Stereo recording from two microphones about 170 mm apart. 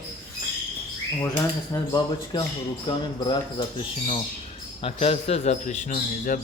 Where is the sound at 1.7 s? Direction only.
20° left (ahead or behind); by 6.3 s 50° left (ahead or behind).